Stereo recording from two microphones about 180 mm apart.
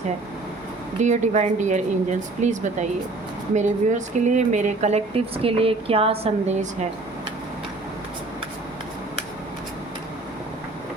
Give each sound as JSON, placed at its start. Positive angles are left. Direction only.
{"t": 1.0, "sound": "speech", "side_deg": -40}